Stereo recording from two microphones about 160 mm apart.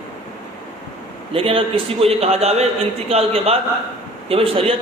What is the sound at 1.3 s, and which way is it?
A man's voice, 35° right (ahead or behind).